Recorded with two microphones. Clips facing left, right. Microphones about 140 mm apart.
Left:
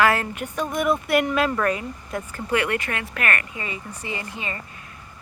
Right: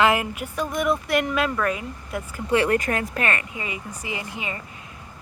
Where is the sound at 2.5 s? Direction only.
35° right (ahead or behind).